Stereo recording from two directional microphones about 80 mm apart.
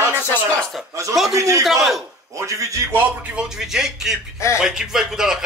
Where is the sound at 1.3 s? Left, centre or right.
Right.